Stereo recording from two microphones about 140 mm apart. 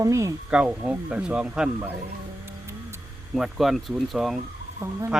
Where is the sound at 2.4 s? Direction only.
20° right (ahead or behind).